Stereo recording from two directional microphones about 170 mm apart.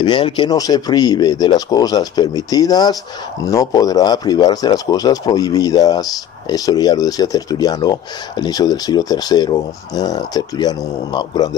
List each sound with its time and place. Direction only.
0.0 s speech: 30° left (ahead or behind)